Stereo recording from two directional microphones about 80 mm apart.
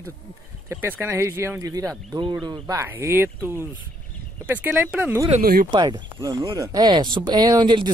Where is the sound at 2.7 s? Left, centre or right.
Right.